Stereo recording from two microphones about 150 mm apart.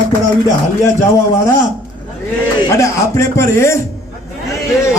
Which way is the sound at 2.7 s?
20° left (ahead or behind).